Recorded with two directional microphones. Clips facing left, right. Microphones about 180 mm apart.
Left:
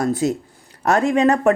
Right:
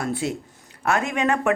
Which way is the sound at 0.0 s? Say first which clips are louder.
Left 6 dB; 40° left (ahead or behind).